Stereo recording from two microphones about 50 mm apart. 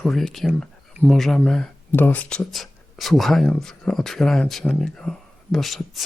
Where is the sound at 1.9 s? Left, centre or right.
Left.